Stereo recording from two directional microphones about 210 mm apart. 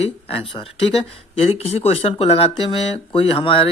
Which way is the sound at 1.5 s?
30° left (ahead or behind).